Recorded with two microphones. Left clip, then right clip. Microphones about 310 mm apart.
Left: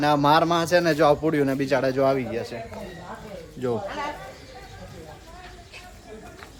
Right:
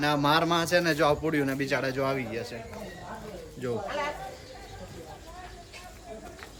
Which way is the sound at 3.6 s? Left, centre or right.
Centre.